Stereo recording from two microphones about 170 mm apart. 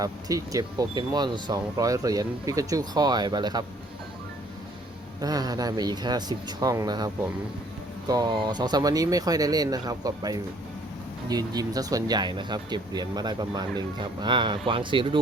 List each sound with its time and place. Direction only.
0.0 s speech: 20° right (ahead or behind)
5.2 s speech: 20° right (ahead or behind)